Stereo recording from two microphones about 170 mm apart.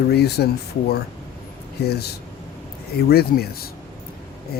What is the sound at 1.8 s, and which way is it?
Speech, 70° left (ahead or behind).